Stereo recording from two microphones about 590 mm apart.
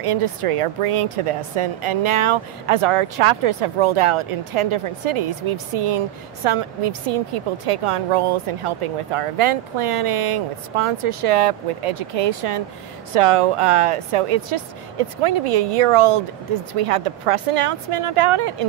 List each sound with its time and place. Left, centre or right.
0.0 s a woman's voice: right